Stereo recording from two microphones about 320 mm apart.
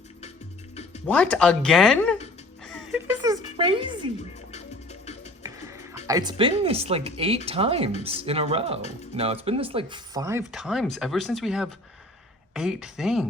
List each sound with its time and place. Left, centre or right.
1.0 s speech: centre
2.6 s music: centre
3.2 s a woman's voice: centre
4.9 s music: centre
5.4 s music: centre
6.1 s speech: centre